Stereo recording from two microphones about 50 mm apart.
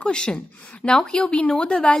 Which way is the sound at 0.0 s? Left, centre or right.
Centre.